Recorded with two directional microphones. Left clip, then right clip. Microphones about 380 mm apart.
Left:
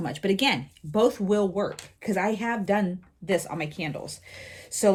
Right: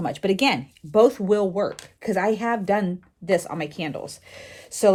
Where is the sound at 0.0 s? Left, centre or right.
Right.